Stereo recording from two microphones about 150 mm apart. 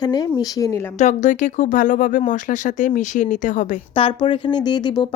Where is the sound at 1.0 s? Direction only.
55° left (ahead or behind).